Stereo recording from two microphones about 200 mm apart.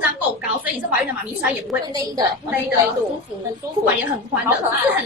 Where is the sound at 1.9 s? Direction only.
20° right (ahead or behind).